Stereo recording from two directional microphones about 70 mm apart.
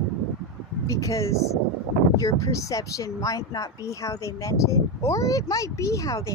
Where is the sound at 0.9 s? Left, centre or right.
Left.